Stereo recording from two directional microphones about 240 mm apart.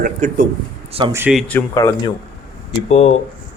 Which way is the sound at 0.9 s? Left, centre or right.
Right.